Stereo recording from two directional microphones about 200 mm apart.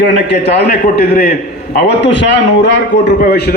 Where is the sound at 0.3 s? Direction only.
55° left (ahead or behind).